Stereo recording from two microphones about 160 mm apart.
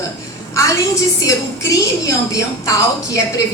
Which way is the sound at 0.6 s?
20° left (ahead or behind).